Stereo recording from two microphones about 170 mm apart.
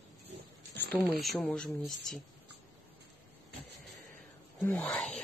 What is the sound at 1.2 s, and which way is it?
Speech, 5° left (ahead or behind).